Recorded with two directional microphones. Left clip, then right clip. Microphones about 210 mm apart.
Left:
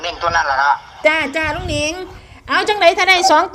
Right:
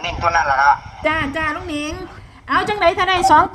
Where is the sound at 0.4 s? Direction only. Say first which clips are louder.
Right 2 dB; 5° left (ahead or behind).